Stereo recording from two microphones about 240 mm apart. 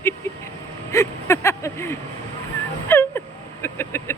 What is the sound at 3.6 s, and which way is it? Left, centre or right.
Vehicle, centre.